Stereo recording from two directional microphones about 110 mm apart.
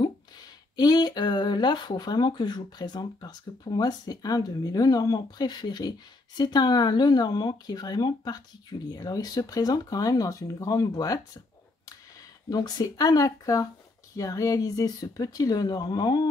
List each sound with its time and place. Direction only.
0.7 s speech: 40° left (ahead or behind)
12.4 s speech: 35° left (ahead or behind)